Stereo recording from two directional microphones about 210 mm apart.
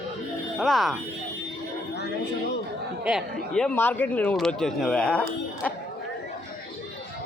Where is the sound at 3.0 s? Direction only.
Centre (ahead or behind).